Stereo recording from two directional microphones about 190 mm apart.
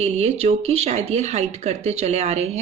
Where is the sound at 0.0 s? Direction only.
35° right (ahead or behind).